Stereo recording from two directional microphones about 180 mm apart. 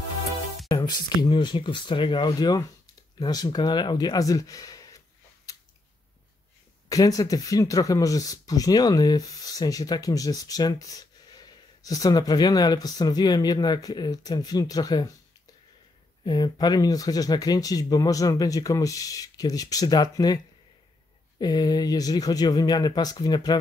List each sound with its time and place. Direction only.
0.7 s speech: 20° left (ahead or behind)
6.9 s speech: 20° left (ahead or behind)
16.3 s speech: 25° left (ahead or behind)
21.4 s speech: 20° left (ahead or behind)